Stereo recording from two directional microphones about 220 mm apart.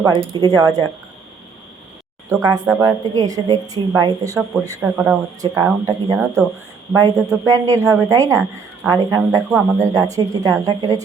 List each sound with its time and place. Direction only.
0.3 s a woman's voice: 15° right (ahead or behind)
2.3 s a woman's voice: 15° right (ahead or behind)
7.4 s a woman's voice: 15° right (ahead or behind)